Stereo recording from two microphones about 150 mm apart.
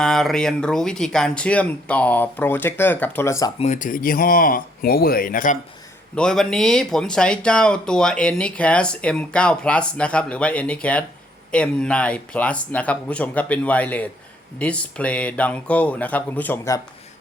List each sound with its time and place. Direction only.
0.0 s speech: 5° left (ahead or behind); by 3.5 s 20° left (ahead or behind)
3.6 s speech: 55° left (ahead or behind)
6.1 s speech: 5° left (ahead or behind)